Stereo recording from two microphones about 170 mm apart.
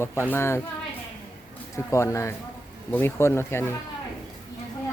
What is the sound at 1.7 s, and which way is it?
Speech, 15° left (ahead or behind).